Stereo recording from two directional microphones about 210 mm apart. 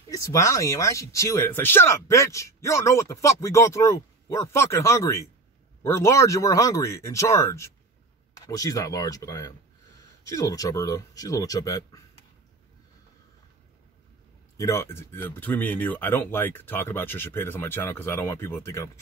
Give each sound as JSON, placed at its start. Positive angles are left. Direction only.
{"t": 0.1, "sound": "speech", "side_deg": 15}
{"t": 14.6, "sound": "speech", "side_deg": 15}